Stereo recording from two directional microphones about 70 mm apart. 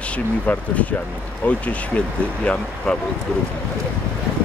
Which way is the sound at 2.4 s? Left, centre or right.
Centre.